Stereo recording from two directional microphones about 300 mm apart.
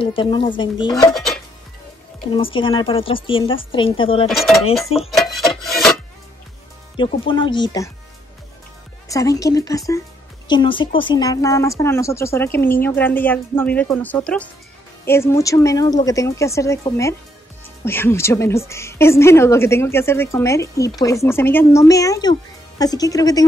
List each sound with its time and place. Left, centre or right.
0.0 s speech: centre
1.1 s dishes: centre
2.2 s speech: centre
4.3 s speech: centre
4.8 s speech: centre
5.1 s rub: centre
7.0 s speech: centre
9.1 s speech: centre